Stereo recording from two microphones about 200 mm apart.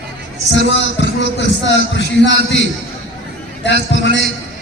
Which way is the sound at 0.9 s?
60° left (ahead or behind).